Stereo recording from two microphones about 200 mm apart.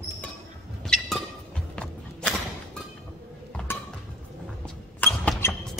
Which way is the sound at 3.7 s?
10° left (ahead or behind).